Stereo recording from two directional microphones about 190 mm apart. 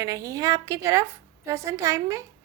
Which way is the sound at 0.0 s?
15° right (ahead or behind).